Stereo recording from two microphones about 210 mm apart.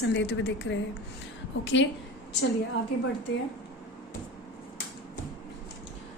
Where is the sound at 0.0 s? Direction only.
60° left (ahead or behind).